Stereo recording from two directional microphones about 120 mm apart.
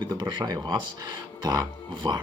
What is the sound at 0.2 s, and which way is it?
Speech, 35° right (ahead or behind).